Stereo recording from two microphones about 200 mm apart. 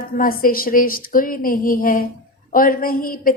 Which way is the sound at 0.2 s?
45° left (ahead or behind).